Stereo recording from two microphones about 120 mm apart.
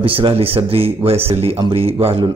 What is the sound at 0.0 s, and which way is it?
A man's voice, 50° right (ahead or behind).